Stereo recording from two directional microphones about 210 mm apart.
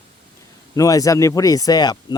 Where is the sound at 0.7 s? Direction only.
15° left (ahead or behind).